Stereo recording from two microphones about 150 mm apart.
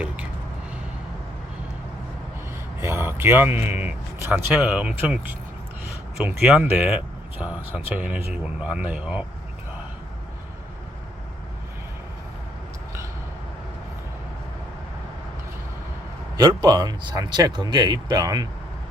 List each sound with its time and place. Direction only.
2.8 s speech: 15° right (ahead or behind)
16.4 s speech: 25° right (ahead or behind)